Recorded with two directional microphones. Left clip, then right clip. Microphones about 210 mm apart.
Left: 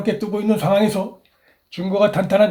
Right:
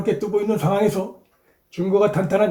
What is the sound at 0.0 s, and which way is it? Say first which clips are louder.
Speech: right 1 dB; 30° left (ahead or behind).